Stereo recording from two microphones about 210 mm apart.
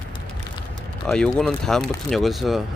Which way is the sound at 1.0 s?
5° left (ahead or behind).